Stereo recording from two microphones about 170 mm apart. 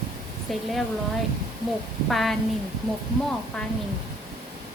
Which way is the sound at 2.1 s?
Centre (ahead or behind).